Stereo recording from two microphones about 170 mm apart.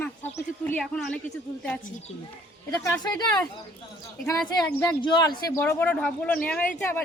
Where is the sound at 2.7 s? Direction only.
20° left (ahead or behind).